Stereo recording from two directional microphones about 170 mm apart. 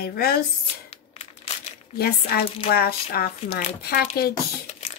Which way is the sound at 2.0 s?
65° left (ahead or behind).